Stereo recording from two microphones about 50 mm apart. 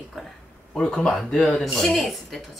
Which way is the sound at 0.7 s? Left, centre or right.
Centre.